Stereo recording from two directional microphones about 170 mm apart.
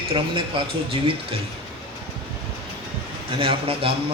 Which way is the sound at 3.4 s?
30° right (ahead or behind).